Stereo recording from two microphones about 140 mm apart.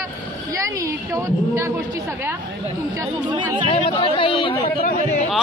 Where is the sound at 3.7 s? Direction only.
40° left (ahead or behind).